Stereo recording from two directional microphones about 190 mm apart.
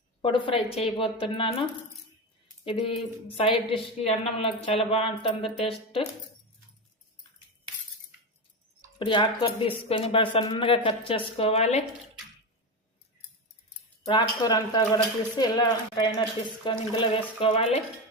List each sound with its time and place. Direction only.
0.2 s a woman's voice: 25° left (ahead or behind)
2.6 s a woman's voice: 30° left (ahead or behind)
9.0 s a woman's voice: 25° left (ahead or behind)
14.0 s a woman's voice: 20° left (ahead or behind)